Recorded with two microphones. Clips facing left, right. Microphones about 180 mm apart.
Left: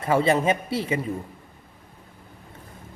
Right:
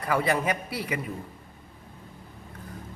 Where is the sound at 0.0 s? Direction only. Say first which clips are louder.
Left 5 dB; 25° left (ahead or behind).